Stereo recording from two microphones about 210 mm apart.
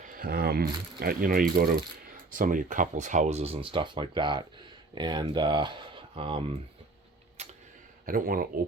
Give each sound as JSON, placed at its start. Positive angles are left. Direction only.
{"t": 0.0, "sound": "speech", "side_deg": -45}
{"t": 7.4, "sound": "tick-tock", "side_deg": -30}
{"t": 8.0, "sound": "speech", "side_deg": -40}